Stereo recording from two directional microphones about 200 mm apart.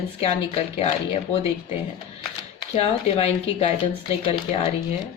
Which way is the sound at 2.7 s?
30° left (ahead or behind).